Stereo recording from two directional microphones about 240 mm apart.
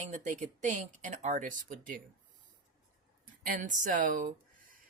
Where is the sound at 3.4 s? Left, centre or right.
Right.